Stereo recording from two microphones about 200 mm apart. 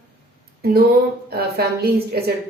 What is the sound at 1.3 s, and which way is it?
A woman's voice, 50° right (ahead or behind).